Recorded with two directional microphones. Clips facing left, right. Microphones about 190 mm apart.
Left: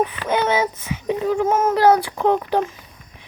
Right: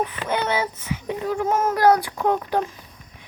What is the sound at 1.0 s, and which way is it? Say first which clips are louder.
Speech: left 5 dB; 20° left (ahead or behind).